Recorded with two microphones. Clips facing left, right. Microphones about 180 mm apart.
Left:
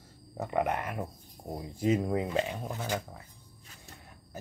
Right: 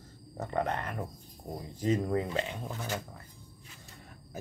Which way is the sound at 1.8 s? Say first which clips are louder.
Left 1 dB; 10° left (ahead or behind).